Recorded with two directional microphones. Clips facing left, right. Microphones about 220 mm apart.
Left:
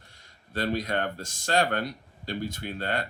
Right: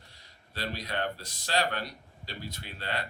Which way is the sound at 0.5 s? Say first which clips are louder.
Left 7 dB; 50° left (ahead or behind).